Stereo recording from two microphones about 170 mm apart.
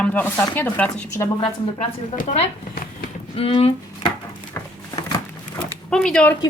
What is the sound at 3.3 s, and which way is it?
Speech, 35° left (ahead or behind).